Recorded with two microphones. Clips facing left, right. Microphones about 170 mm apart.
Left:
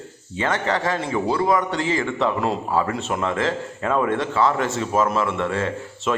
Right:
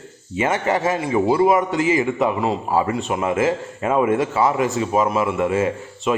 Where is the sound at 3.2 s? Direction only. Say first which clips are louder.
Right 5 dB; 15° right (ahead or behind).